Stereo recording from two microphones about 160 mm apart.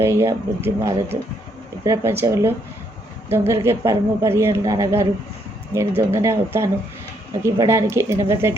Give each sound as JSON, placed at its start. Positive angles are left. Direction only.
{"t": 0.0, "sound": "speech", "side_deg": -15}